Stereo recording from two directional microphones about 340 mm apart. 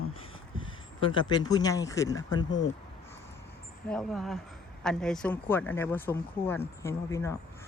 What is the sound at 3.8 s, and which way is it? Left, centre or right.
Speech, centre.